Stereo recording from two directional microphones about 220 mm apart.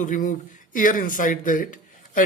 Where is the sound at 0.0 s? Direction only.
35° left (ahead or behind).